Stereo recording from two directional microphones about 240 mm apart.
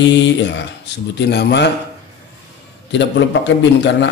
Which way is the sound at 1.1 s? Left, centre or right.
Left.